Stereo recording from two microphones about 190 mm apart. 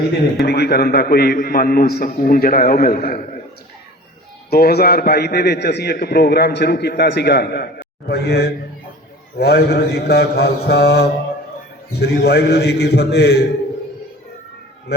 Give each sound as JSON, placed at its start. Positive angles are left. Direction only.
{"t": 0.4, "sound": "a man's voice", "side_deg": 60}
{"t": 4.4, "sound": "a man's voice", "side_deg": 55}